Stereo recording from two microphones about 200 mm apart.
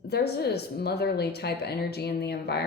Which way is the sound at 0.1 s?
55° left (ahead or behind).